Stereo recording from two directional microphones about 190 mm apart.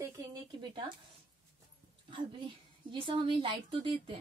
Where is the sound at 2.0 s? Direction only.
25° right (ahead or behind).